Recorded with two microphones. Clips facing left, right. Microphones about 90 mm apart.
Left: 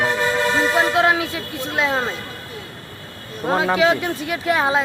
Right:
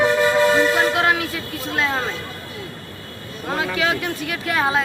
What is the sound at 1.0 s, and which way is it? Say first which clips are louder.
Speech: left 2 dB; 20° left (ahead or behind).